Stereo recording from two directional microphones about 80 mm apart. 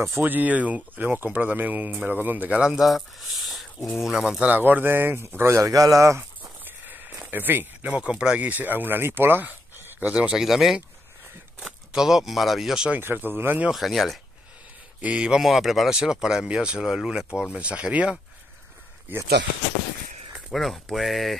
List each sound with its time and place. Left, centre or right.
0.2 s speech: right
2.6 s speech: centre; by 6.5 s right
6.6 s speech: right; by 12.9 s centre
12.9 s speech: right
13.7 s speech: centre
15.0 s speech: centre
20.3 s speech: centre